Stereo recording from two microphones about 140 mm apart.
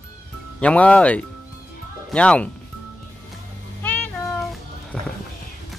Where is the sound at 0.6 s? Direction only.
10° left (ahead or behind).